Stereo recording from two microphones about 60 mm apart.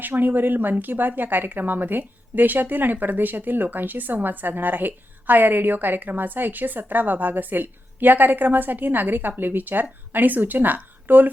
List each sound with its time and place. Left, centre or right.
0.0 s a woman's voice: right